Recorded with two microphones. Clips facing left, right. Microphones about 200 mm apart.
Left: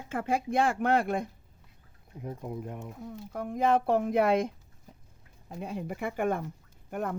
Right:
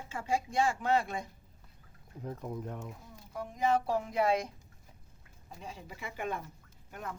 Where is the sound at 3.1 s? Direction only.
55° left (ahead or behind).